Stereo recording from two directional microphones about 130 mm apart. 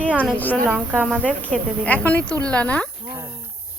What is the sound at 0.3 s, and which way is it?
Speech, 15° left (ahead or behind).